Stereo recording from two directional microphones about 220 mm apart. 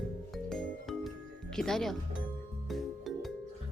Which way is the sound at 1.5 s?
Centre (ahead or behind).